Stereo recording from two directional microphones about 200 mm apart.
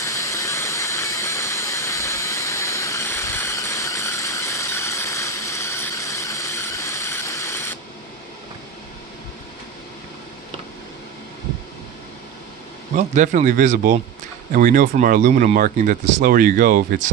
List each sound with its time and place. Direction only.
0.0 s steam: 15° left (ahead or behind)
12.9 s speech: 35° right (ahead or behind)